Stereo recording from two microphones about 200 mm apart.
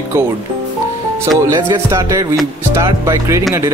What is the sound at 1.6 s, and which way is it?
Speech, 15° right (ahead or behind).